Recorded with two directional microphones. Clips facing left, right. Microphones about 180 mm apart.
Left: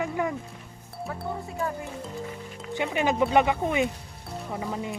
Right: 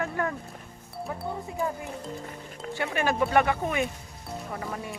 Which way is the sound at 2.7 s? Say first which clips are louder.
Left 2 dB; 20° left (ahead or behind).